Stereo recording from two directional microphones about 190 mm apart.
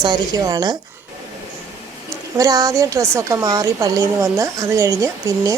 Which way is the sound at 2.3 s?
20° right (ahead or behind).